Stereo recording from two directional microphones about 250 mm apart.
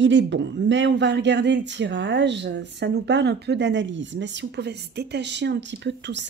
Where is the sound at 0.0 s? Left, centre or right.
Right.